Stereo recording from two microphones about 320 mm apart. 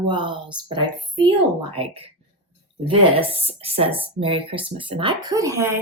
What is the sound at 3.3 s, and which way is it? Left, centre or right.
Speech, centre.